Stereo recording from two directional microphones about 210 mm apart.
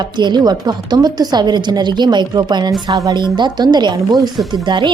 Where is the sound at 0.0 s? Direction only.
20° right (ahead or behind).